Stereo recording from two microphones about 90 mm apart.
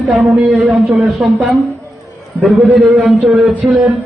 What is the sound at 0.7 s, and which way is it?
Speech, centre (ahead or behind).